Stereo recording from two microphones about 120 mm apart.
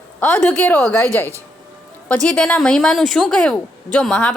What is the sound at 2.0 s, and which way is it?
A woman's voice, 10° left (ahead or behind).